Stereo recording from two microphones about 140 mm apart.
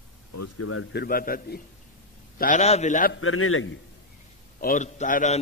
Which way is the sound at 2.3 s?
65° left (ahead or behind).